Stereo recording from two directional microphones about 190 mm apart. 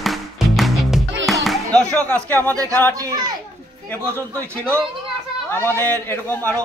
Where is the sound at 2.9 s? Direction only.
20° right (ahead or behind).